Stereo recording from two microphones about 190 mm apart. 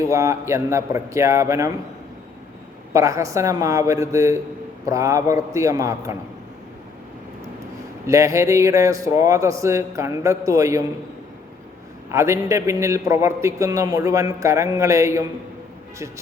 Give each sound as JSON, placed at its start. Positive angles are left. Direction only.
{"t": 0.1, "sound": "a man's voice", "side_deg": -15}
{"t": 2.9, "sound": "a man's voice", "side_deg": -15}
{"t": 8.0, "sound": "a man's voice", "side_deg": -15}
{"t": 12.1, "sound": "a man's voice", "side_deg": -15}